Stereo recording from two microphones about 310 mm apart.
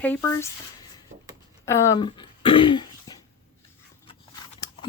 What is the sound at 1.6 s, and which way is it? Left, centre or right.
Speech, centre.